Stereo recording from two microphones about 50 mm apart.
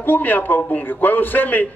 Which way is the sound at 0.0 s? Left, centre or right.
Left.